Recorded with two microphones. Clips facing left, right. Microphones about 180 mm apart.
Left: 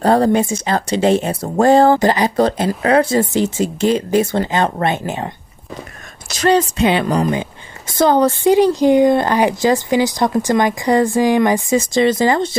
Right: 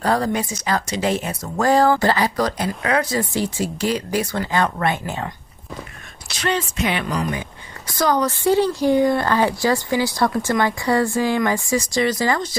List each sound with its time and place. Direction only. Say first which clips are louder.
0.0 s speech: left 7 dB; 30° left (ahead or behind)
6.3 s speech: left 9 dB; 40° left (ahead or behind)
8.5 s speech: left 4 dB; 15° left (ahead or behind)